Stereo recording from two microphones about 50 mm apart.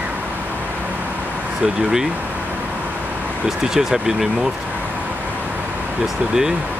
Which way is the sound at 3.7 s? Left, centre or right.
Centre.